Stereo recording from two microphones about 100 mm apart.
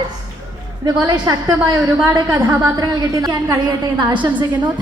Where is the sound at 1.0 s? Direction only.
45° right (ahead or behind).